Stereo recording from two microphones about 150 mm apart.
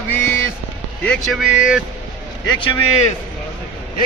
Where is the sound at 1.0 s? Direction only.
5° left (ahead or behind).